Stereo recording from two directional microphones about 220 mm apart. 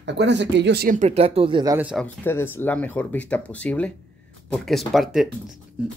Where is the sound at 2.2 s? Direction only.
10° left (ahead or behind).